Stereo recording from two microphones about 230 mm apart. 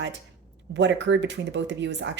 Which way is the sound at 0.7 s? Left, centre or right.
Right.